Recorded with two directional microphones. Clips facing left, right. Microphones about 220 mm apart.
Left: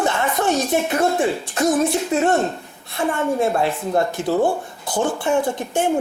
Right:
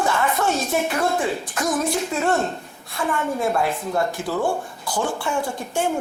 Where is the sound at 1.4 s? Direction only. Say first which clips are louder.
Left 5 dB; 30° left (ahead or behind).